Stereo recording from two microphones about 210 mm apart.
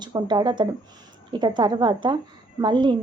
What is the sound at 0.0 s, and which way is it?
A woman's voice, 20° right (ahead or behind).